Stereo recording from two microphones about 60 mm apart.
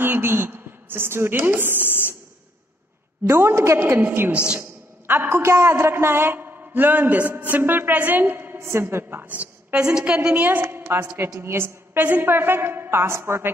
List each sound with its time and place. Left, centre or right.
0.0 s a woman's voice: right
1.8 s a sound: left
3.3 s a woman's voice: right